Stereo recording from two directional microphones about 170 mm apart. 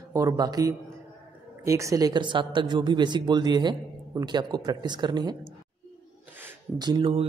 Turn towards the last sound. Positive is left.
turn(degrees=-35)  # may be behind; listen again after turning